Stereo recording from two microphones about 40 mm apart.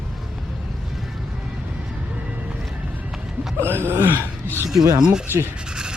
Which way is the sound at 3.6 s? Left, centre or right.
Right.